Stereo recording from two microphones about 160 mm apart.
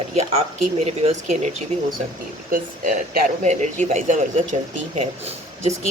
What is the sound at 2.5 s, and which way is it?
Speech, 60° right (ahead or behind).